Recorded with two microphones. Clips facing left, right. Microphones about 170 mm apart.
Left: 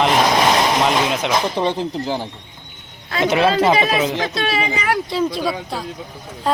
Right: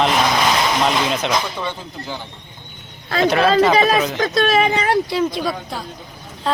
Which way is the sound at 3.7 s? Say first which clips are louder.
Right 2 dB; 40° right (ahead or behind).